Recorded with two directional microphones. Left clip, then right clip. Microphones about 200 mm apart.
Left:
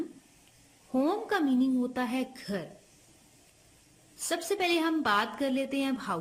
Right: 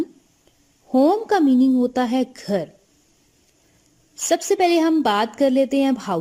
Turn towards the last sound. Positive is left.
turn(degrees=-35)  # may be behind; listen again after turning